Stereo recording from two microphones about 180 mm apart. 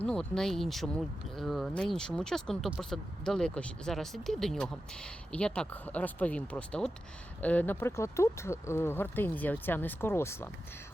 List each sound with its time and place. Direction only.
0.0 s speech: 5° left (ahead or behind)